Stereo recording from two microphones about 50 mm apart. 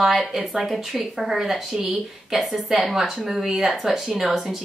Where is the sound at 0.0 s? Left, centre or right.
Centre.